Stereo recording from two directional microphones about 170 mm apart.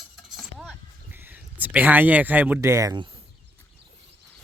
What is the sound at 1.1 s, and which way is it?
Speech, 10° right (ahead or behind).